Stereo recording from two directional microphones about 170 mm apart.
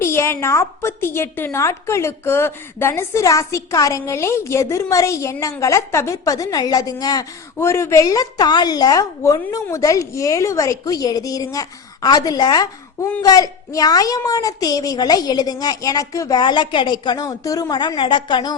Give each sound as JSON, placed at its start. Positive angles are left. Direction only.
{"t": 0.0, "sound": "a woman's voice", "side_deg": 15}